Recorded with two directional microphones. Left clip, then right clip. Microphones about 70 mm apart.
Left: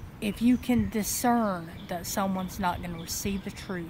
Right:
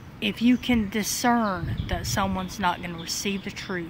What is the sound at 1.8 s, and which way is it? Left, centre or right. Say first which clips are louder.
A woman's voice: right 3 dB; left.